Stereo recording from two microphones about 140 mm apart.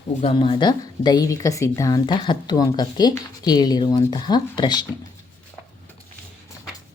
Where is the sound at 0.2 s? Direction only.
40° left (ahead or behind).